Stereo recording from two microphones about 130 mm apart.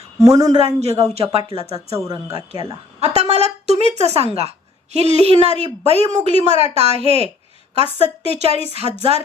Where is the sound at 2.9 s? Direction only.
55° right (ahead or behind).